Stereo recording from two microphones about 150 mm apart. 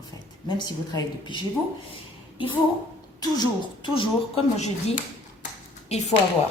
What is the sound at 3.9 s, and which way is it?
A woman's voice, 40° left (ahead or behind).